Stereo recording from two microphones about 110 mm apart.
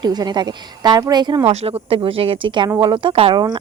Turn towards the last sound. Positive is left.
turn(degrees=-55)  # may be behind; listen again after turning